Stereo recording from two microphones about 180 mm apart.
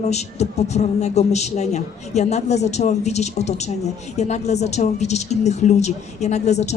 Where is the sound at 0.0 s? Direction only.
40° left (ahead or behind).